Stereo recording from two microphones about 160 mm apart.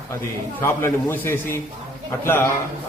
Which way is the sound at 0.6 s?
15° left (ahead or behind).